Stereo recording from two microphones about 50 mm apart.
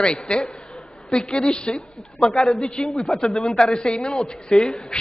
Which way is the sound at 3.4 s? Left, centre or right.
Centre.